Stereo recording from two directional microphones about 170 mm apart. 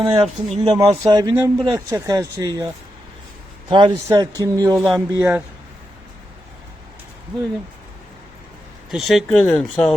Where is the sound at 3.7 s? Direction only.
25° right (ahead or behind).